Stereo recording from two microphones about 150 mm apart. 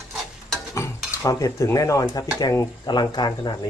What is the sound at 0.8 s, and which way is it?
Stir, 20° left (ahead or behind).